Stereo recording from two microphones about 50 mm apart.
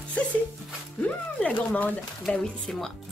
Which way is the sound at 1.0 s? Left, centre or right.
Left.